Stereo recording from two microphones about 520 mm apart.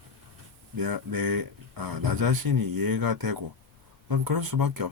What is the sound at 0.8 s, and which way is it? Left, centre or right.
Speech, right.